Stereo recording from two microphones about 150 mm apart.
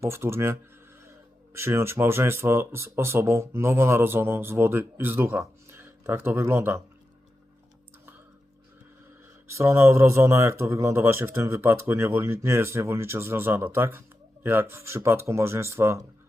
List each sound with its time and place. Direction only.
0.0 s speech: 15° right (ahead or behind)
9.5 s speech: 20° right (ahead or behind)